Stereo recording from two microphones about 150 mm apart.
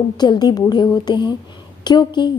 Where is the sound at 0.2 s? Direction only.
30° left (ahead or behind).